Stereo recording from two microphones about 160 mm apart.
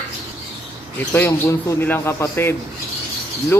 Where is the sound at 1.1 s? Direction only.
15° left (ahead or behind).